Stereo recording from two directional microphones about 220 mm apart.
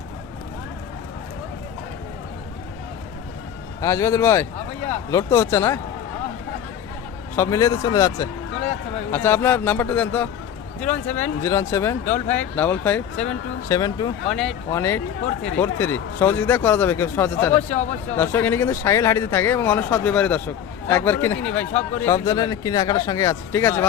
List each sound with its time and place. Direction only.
3.8 s speech: 15° left (ahead or behind)
7.3 s speech: 15° left (ahead or behind)
14.3 s speech: centre (ahead or behind)